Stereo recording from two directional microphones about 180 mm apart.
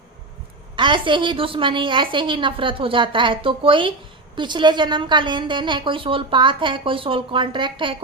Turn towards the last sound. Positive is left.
turn(degrees=-25)  # may be behind; listen again after turning